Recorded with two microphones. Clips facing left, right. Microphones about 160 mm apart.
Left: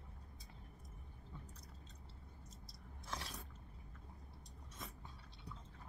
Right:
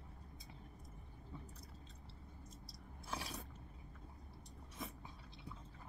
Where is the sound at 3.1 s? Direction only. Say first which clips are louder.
Right 2 dB; 10° right (ahead or behind).